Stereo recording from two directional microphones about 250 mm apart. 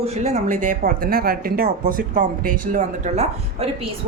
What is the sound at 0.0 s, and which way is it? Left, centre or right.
Speech, right.